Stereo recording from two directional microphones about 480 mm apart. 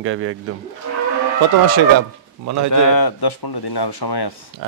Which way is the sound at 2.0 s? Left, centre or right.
Right.